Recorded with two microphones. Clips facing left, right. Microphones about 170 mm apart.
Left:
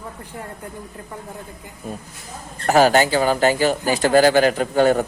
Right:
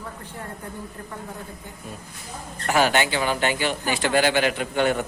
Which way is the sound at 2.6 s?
40° left (ahead or behind).